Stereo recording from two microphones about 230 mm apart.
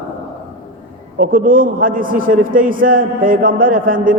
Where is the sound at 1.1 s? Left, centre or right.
Right.